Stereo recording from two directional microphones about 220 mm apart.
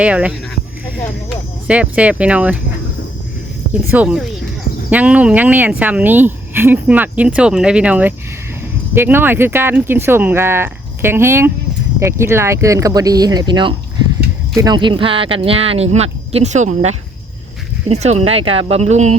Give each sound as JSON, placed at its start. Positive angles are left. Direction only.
{"t": 0.0, "sound": "speech", "side_deg": -5}
{"t": 1.6, "sound": "speech", "side_deg": -5}
{"t": 3.9, "sound": "speech", "side_deg": -5}